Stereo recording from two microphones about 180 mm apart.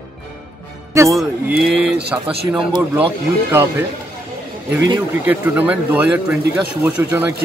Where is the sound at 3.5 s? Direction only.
15° right (ahead or behind).